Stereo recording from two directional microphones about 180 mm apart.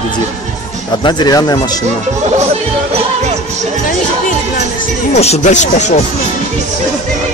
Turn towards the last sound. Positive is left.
turn(degrees=40)  # may be behind; listen again after turning